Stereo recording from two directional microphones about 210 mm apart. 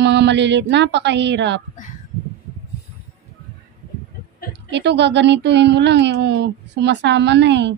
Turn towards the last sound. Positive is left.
turn(degrees=-55)  # may be behind; listen again after turning